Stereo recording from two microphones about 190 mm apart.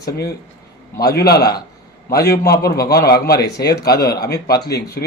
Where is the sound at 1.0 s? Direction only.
55° left (ahead or behind).